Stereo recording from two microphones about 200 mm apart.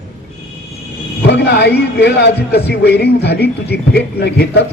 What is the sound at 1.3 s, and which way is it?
A man's voice, 55° left (ahead or behind).